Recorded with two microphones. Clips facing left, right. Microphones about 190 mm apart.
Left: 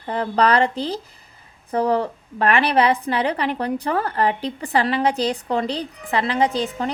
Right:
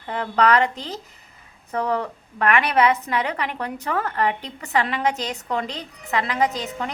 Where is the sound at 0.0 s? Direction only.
35° left (ahead or behind).